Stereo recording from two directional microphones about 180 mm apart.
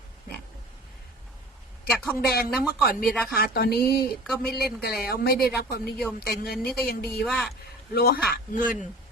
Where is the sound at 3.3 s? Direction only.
55° left (ahead or behind).